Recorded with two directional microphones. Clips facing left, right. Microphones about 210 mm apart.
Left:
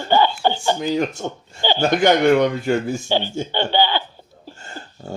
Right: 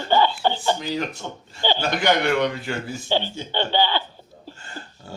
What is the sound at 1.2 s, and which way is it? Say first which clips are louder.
Speech: left 3 dB; 50° left (ahead or behind).